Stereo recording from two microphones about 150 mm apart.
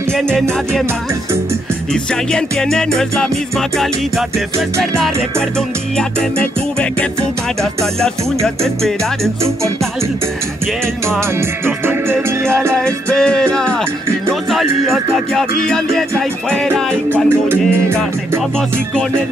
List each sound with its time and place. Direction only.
0.1 s music: 5° left (ahead or behind)
2.3 s music: 5° left (ahead or behind)
11.1 s music: 15° right (ahead or behind)
12.8 s music: 5° left (ahead or behind)
14.9 s music: centre (ahead or behind)
17.1 s music: 15° right (ahead or behind)